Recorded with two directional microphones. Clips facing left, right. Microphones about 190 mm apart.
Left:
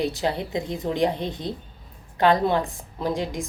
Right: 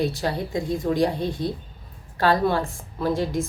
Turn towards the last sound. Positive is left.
turn(degrees=15)  # may be behind; listen again after turning